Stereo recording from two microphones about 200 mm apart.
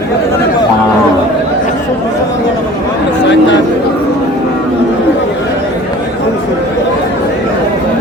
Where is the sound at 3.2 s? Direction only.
60° left (ahead or behind).